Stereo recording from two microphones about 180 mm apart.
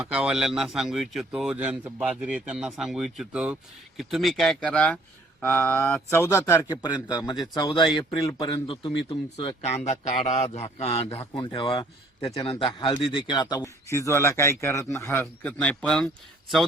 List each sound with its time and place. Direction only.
0.0 s a man's voice: 5° right (ahead or behind)